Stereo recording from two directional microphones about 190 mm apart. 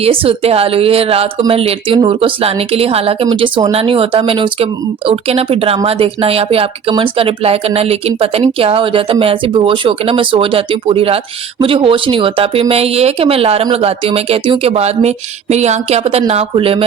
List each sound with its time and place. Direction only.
0.0 s a woman's voice: 30° right (ahead or behind)